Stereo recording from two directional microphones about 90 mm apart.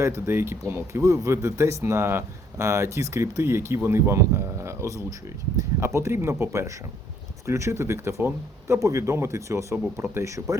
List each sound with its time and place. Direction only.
0.0 s speech: 30° right (ahead or behind)